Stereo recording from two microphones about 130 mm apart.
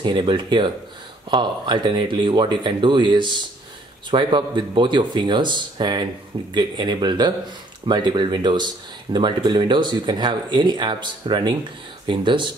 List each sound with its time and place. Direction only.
0.0 s speech: 35° right (ahead or behind)